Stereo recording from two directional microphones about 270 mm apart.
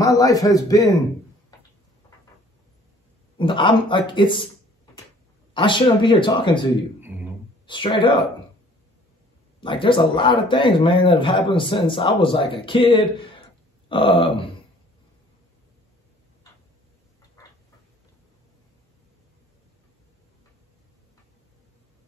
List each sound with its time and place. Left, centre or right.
0.0 s a man's voice: centre
3.3 s a man's voice: centre
5.5 s a man's voice: centre
7.6 s a man's voice: centre
9.6 s a man's voice: centre